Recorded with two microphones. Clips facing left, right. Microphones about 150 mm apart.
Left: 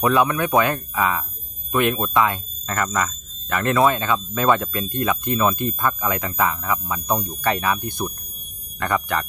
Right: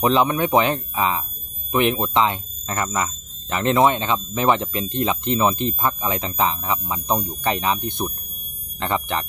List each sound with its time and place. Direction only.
0.0 s speech: 25° right (ahead or behind)